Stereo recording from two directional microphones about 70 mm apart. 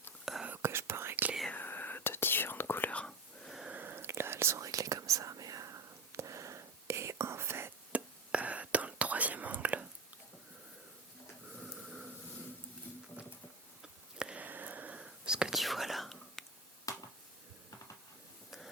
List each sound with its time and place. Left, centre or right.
0.3 s whispering: centre
0.6 s whispering: right
1.5 s whispering: left
2.9 s whispering: centre
3.7 s whispering: right
7.9 s whispering: centre
11.6 s a sound: centre
14.2 s a sound: centre
14.4 s a sound: right
15.0 s whispering: centre
16.9 s finger snapping: left